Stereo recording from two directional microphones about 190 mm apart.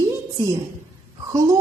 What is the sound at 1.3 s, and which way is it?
Speech, 15° right (ahead or behind).